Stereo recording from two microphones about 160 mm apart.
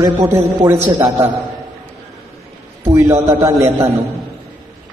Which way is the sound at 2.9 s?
20° right (ahead or behind).